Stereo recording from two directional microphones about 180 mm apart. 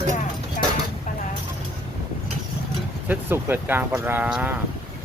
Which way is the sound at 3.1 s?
10° right (ahead or behind).